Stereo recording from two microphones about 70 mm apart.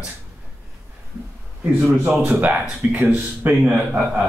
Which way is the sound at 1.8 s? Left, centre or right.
Right.